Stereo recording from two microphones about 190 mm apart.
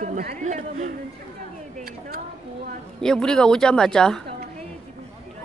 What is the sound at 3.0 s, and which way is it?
Speech, 5° left (ahead or behind).